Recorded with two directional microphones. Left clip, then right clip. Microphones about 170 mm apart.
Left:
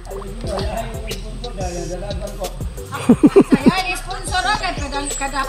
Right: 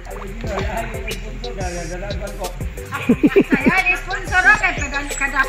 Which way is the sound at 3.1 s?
20° left (ahead or behind).